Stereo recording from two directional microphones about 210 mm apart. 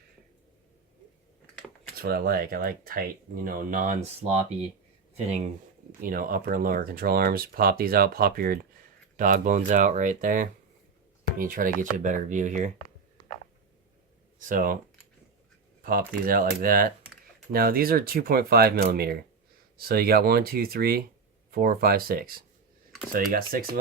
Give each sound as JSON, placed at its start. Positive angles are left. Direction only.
{"t": 2.0, "sound": "speech", "side_deg": -45}
{"t": 5.1, "sound": "speech", "side_deg": -35}
{"t": 14.3, "sound": "speech", "side_deg": -40}
{"t": 15.8, "sound": "speech", "side_deg": -45}